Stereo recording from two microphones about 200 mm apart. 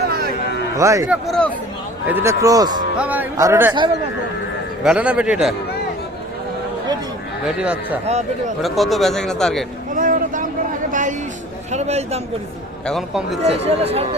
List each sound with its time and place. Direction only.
0.1 s a sound: 50° right (ahead or behind)
0.8 s speech: 15° right (ahead or behind)
1.1 s a man's voice: centre (ahead or behind)
2.0 s speech: 10° right (ahead or behind)
3.0 s speech: 10° right (ahead or behind)
4.8 s a man's voice: 5° right (ahead or behind)
7.4 s speech: 5° right (ahead or behind)
8.0 s speech: 30° right (ahead or behind)
8.6 s a man's voice: centre (ahead or behind)
9.9 s a sound: 40° right (ahead or behind)
11.7 s speech: 35° right (ahead or behind)
12.8 s a man's voice: centre (ahead or behind)
13.4 s speech: 30° right (ahead or behind)